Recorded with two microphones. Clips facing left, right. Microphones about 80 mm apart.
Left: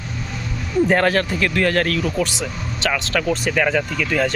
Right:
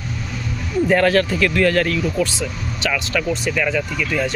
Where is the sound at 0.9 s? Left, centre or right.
Left.